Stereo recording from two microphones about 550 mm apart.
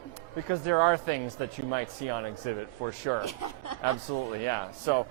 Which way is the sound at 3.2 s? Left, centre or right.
Left.